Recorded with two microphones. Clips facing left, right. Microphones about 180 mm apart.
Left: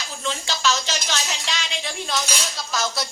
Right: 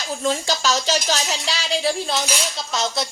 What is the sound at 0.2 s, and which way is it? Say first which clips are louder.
Speech: right 4 dB; 40° right (ahead or behind).